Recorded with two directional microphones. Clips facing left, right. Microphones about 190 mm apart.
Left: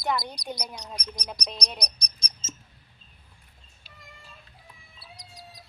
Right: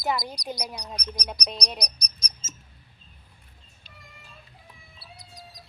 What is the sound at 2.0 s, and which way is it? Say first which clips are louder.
Rodents: right 1 dB; 30° left (ahead or behind).